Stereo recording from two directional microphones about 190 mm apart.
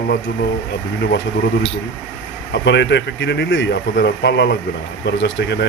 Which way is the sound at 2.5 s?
70° left (ahead or behind).